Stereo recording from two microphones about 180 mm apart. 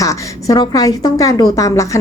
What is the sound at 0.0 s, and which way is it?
A woman's voice, 20° left (ahead or behind).